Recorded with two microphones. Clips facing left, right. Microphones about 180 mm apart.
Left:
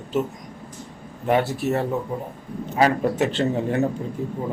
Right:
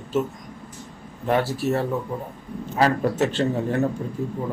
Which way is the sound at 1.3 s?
20° left (ahead or behind).